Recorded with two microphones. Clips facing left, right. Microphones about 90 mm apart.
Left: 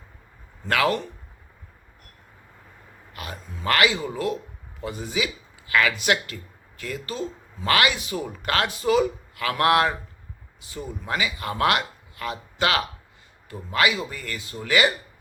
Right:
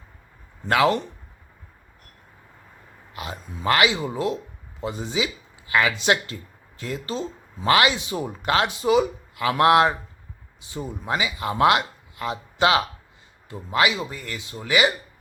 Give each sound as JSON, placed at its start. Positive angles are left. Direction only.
{"t": 0.6, "sound": "speech", "side_deg": -25}
{"t": 3.1, "sound": "a man's voice", "side_deg": -20}